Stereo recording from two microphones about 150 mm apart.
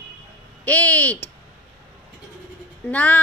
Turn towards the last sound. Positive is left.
turn(degrees=10)  # may be behind; listen again after turning